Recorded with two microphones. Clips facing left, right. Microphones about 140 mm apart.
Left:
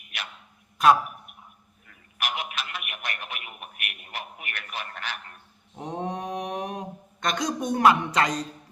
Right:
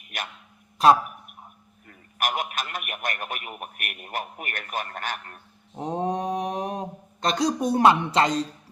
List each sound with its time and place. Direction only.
0.1 s a sound: 45° right (ahead or behind)
0.8 s speech: 30° right (ahead or behind)
1.9 s a man's voice: 45° right (ahead or behind)
5.7 s speech: 30° right (ahead or behind)